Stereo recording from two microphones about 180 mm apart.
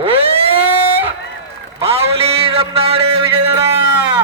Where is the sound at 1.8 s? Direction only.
35° right (ahead or behind).